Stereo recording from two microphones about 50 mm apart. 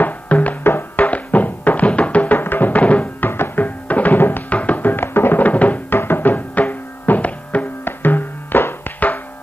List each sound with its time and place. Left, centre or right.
0.0 s music: left
2.3 s music: left
2.8 s music: left
3.3 s music: left
3.6 s music: left
5.4 s music: left
5.9 s music: left
7.8 s music: left